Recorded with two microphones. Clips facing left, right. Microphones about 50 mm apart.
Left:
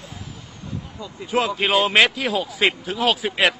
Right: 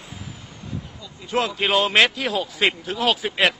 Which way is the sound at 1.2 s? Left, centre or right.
Centre.